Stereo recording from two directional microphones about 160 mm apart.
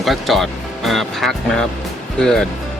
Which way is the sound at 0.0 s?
Centre (ahead or behind).